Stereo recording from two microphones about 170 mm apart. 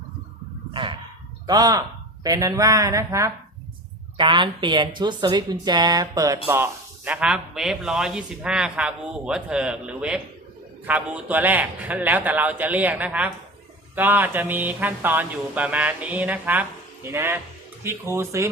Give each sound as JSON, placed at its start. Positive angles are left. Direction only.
{"t": 0.7, "sound": "a sound", "side_deg": -30}
{"t": 1.5, "sound": "speech", "side_deg": -25}
{"t": 4.2, "sound": "a woman's voice", "side_deg": -30}